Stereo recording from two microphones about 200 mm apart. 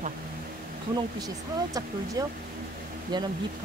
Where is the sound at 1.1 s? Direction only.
20° right (ahead or behind).